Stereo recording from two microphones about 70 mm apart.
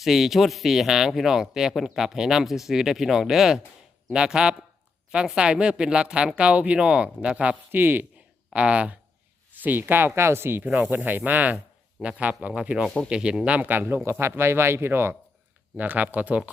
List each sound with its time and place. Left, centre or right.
0.0 s speech: centre
7.7 s speech: right
8.5 s speech: centre; by 10.6 s right
10.6 s speech: right
15.8 s speech: right